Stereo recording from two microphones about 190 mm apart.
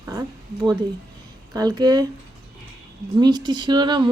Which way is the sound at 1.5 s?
20° right (ahead or behind).